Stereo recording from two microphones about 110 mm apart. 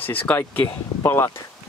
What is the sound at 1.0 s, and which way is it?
Speech, 25° left (ahead or behind).